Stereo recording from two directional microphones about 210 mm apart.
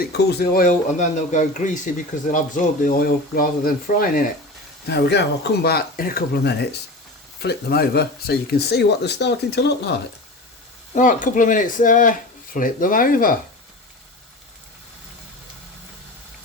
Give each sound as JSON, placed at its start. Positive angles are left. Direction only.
{"t": 0.0, "sound": "speech", "side_deg": 50}
{"t": 4.9, "sound": "speech", "side_deg": 50}
{"t": 10.9, "sound": "speech", "side_deg": 40}